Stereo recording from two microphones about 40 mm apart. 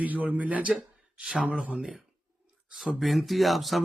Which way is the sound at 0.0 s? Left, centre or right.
Right.